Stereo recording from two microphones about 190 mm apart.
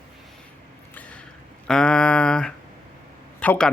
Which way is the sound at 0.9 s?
5° left (ahead or behind).